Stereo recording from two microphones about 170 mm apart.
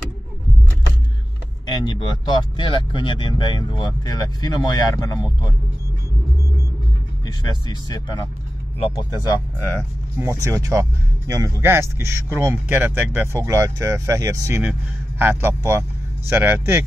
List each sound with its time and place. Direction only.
1.7 s speech: 25° left (ahead or behind)
7.4 s speech: 25° left (ahead or behind)
10.1 s speech: 15° right (ahead or behind)